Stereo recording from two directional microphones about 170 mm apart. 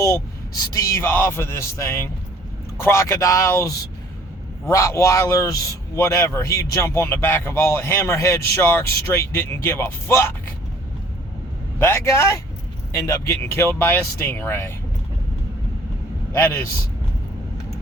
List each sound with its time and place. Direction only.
0.7 s a man's voice: 20° left (ahead or behind)
11.8 s a man's voice: 15° left (ahead or behind)
16.3 s a man's voice: 15° left (ahead or behind)